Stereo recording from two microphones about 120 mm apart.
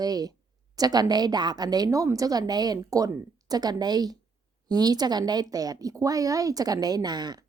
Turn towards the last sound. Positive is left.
turn(degrees=-35)  # may be behind; listen again after turning